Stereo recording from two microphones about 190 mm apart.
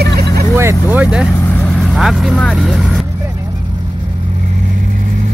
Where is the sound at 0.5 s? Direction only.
15° right (ahead or behind).